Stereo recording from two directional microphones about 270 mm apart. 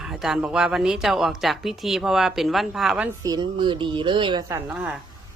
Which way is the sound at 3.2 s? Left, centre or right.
Centre.